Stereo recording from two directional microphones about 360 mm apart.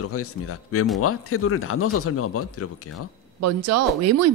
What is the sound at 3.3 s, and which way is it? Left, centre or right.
Speech, right.